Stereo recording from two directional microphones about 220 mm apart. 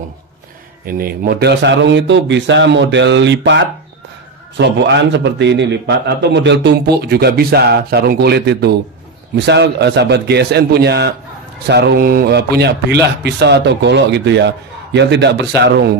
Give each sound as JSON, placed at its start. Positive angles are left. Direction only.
{"t": 0.8, "sound": "a man's voice", "side_deg": -40}